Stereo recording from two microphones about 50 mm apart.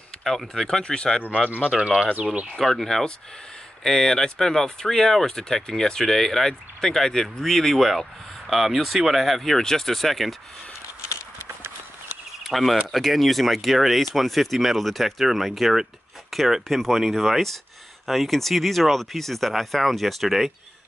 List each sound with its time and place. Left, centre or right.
0.2 s speech: centre
1.7 s speech: centre
2.6 s speech: centre
11.3 s clip-clop: right
12.4 s speech: centre